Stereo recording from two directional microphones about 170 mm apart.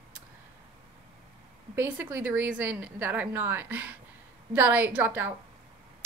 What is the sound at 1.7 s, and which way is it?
A woman's voice, 15° right (ahead or behind).